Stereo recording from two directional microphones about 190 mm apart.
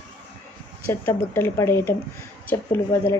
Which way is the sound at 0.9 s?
10° left (ahead or behind).